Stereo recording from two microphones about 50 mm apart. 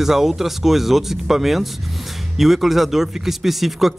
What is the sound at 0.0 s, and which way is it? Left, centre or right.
Speech, centre.